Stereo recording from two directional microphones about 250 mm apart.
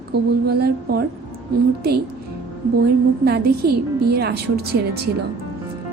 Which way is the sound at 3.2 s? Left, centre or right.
Right.